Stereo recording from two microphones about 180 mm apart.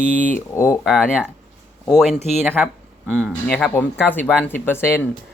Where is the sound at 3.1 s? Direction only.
5° left (ahead or behind).